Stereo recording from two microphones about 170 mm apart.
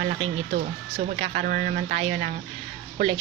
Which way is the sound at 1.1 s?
40° right (ahead or behind).